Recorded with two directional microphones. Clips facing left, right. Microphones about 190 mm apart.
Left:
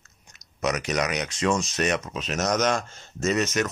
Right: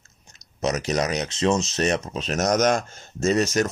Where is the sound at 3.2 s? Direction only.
30° right (ahead or behind).